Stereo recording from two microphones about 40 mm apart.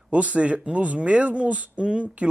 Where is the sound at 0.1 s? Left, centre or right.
Right.